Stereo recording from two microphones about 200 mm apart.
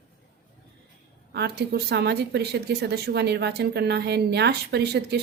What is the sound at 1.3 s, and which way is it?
A woman's voice, 55° right (ahead or behind).